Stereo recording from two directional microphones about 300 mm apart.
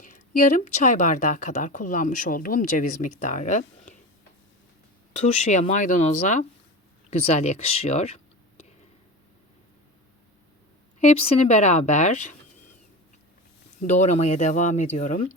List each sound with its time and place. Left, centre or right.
0.0 s speech: left
5.1 s speech: left
11.0 s speech: left
13.8 s speech: left